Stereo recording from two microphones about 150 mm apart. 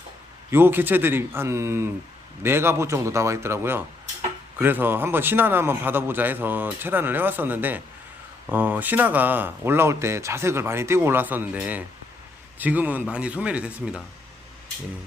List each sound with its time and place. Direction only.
0.5 s speech: 15° right (ahead or behind)